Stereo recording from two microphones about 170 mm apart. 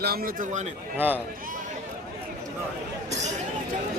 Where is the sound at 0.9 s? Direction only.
10° right (ahead or behind).